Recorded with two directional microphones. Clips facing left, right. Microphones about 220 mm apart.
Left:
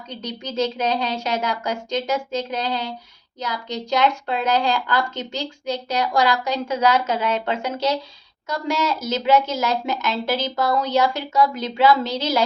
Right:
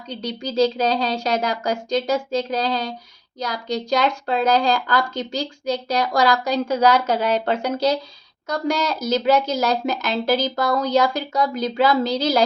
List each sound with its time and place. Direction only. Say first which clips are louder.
0.1 s a woman's voice: right 4 dB; 35° right (ahead or behind)